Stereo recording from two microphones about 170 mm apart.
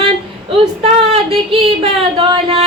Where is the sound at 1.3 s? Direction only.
35° right (ahead or behind).